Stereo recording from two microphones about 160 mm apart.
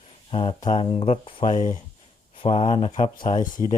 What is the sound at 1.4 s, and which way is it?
Speech, 50° left (ahead or behind).